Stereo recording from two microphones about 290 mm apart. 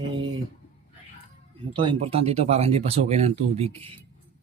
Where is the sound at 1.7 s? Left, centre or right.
Centre.